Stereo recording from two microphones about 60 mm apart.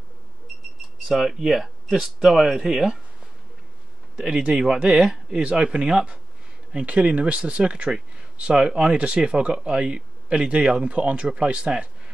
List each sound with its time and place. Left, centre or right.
1.0 s speech: centre
4.2 s speech: centre